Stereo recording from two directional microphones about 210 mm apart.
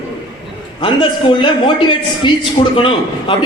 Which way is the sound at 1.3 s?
20° left (ahead or behind).